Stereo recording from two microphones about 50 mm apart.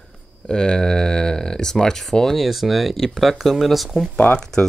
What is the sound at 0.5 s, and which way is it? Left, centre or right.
Speech, centre.